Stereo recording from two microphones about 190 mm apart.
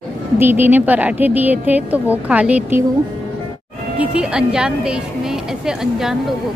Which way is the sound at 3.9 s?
5° right (ahead or behind).